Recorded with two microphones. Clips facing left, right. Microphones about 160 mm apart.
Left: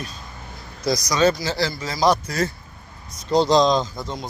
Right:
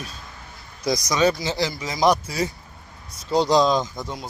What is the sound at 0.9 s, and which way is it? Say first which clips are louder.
Speech: left 1 dB; 20° right (ahead or behind).